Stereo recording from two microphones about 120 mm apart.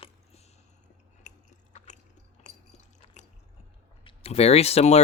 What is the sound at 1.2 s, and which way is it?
Chewing, 90° left.